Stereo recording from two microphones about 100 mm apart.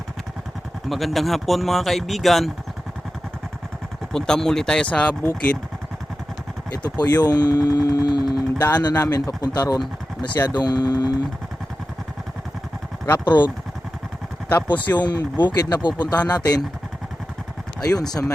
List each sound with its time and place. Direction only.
0.9 s speech: centre (ahead or behind)
4.1 s speech: 5° left (ahead or behind)
6.7 s speech: 45° left (ahead or behind)
13.1 s speech: 45° left (ahead or behind)
14.9 s speech: 45° left (ahead or behind)
17.8 s speech: 40° left (ahead or behind)